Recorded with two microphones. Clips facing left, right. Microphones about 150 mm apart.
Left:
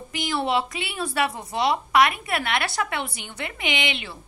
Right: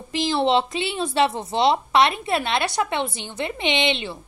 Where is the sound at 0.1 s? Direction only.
30° right (ahead or behind).